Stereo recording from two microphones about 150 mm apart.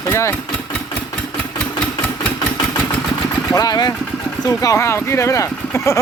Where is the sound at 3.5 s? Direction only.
25° left (ahead or behind).